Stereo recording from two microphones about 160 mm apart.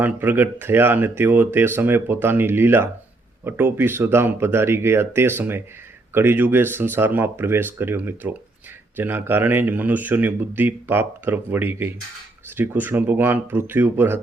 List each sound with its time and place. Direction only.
0.0 s speech: 10° right (ahead or behind)